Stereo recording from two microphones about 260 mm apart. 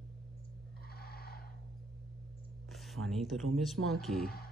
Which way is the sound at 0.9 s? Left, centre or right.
Left.